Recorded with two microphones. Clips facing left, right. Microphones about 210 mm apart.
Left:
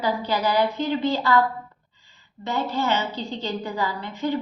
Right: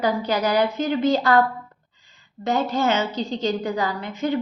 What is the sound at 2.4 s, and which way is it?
A woman's voice, 45° right (ahead or behind).